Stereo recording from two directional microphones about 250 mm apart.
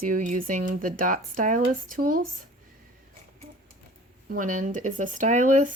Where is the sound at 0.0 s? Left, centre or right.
Right.